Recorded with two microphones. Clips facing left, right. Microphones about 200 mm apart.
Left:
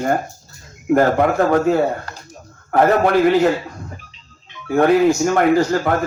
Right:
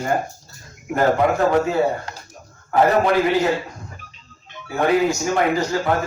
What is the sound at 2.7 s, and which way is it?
Speech, 55° left (ahead or behind).